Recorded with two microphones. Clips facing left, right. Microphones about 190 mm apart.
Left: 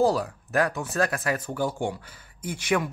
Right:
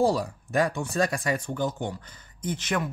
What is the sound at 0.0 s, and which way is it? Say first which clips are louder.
Speech: left 1 dB; centre (ahead or behind).